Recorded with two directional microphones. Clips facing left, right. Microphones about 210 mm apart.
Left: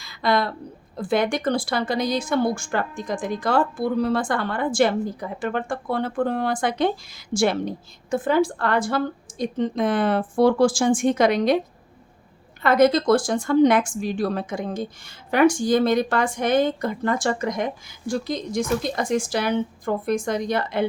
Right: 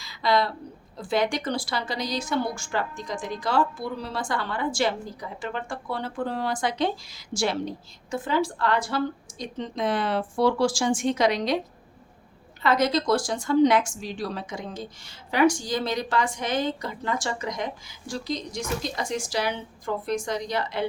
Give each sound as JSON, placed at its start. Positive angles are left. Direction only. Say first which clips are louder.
{"t": 0.0, "sound": "a sound", "louder": "left 2 dB", "side_deg": 55}
{"t": 0.9, "sound": "a woman's voice", "louder": "left 3 dB", "side_deg": 55}
{"t": 12.6, "sound": "a woman's voice", "louder": "left 6 dB", "side_deg": 55}